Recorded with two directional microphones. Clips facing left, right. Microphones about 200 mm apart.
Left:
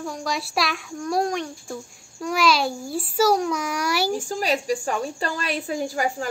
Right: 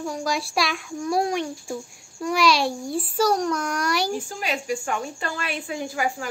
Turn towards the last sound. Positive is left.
turn(degrees=40)  # may be behind; listen again after turning